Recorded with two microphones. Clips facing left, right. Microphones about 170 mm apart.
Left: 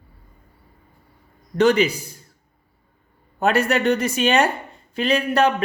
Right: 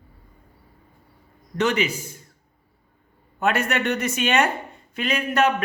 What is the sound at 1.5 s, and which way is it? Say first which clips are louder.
Speech: left 6 dB; 35° left (ahead or behind).